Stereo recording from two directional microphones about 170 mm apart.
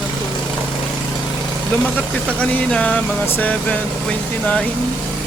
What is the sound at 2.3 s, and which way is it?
Speech, 5° left (ahead or behind).